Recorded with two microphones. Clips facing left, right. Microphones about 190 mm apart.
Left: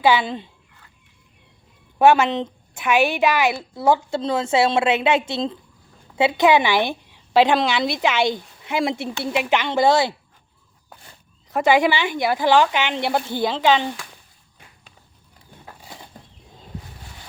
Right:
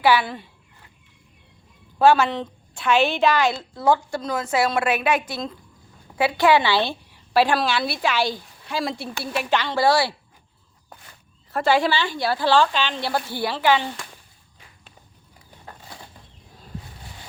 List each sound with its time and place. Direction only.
0.0 s a woman's voice: 20° left (ahead or behind)
2.0 s a woman's voice: 20° left (ahead or behind)
11.5 s a woman's voice: 20° left (ahead or behind)